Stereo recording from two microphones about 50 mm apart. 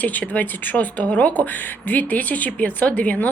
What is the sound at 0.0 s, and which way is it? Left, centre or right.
Speech, left.